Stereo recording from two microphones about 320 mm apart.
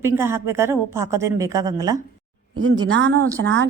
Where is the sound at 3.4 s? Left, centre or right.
Right.